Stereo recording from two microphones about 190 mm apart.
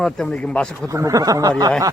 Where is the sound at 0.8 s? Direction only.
15° right (ahead or behind).